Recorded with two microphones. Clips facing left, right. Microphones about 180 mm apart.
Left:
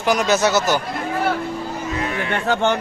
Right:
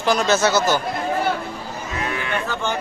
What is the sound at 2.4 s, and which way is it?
Speech, 70° left (ahead or behind).